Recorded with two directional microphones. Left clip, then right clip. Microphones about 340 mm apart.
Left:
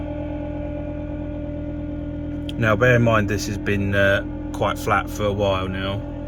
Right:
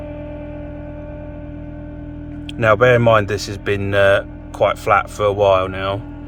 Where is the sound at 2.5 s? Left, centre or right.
Centre.